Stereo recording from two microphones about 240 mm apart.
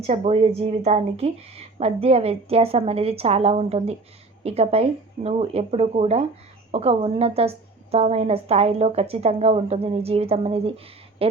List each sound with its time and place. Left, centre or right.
0.1 s a woman's voice: right